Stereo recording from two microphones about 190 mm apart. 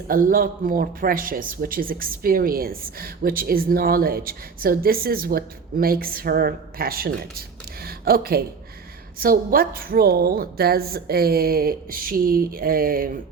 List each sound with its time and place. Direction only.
0.1 s speech: 50° right (ahead or behind)